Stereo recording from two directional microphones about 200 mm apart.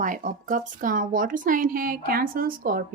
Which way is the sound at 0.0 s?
40° right (ahead or behind).